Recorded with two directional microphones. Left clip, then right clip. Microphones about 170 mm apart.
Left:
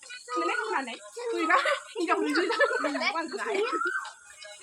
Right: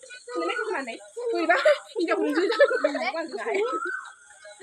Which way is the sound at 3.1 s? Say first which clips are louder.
Right 2 dB; 5° right (ahead or behind).